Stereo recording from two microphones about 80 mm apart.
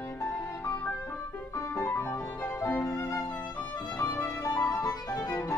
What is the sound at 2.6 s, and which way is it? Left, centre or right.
Violin, left.